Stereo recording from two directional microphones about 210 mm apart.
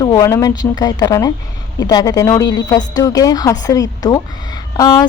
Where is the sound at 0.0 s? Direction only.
15° left (ahead or behind).